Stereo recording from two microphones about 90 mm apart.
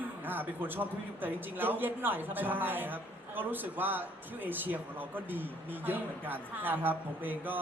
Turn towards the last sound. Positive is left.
turn(degrees=-20)  # may be behind; listen again after turning